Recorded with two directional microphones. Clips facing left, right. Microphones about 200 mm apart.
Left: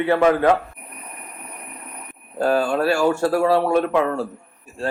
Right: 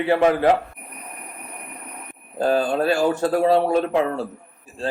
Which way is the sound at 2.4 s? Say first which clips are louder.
Left 1 dB; 35° right (ahead or behind).